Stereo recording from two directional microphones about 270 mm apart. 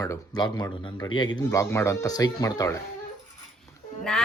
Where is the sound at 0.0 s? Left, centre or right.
Centre.